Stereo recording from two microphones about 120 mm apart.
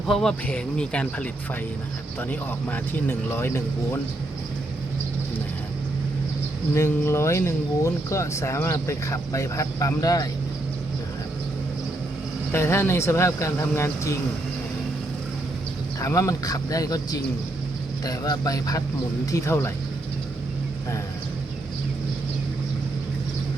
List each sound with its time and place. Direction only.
0.1 s speech: 5° left (ahead or behind)
2.3 s speech: 15° left (ahead or behind)
6.7 s speech: 25° left (ahead or behind)
12.5 s speech: 20° left (ahead or behind)
16.0 s speech: 25° left (ahead or behind)